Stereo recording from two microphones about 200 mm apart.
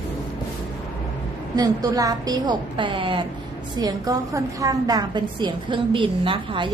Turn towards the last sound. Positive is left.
turn(degrees=-25)  # may be behind; listen again after turning